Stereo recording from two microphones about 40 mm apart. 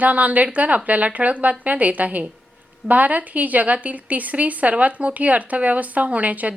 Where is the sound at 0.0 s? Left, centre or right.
Right.